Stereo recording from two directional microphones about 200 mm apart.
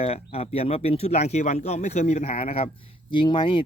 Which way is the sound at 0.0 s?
30° left (ahead or behind).